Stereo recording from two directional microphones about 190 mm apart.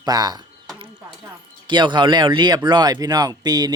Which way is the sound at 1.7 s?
25° right (ahead or behind).